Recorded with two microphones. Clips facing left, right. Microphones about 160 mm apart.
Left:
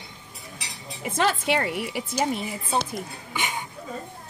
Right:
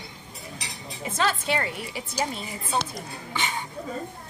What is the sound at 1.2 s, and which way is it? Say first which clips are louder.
A woman's voice: left 3 dB; 65° left (ahead or behind).